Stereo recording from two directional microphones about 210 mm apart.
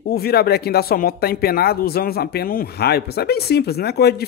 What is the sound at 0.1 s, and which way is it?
A man's voice, 50° left (ahead or behind).